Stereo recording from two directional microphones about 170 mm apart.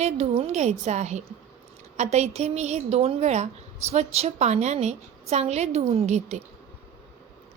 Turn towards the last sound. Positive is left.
turn(degrees=-40)  # may be behind; listen again after turning